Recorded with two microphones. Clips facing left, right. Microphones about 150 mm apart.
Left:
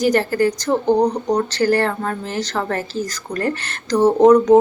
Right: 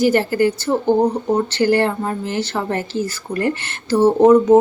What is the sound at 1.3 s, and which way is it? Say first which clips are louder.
Speech: right 2 dB; 10° right (ahead or behind).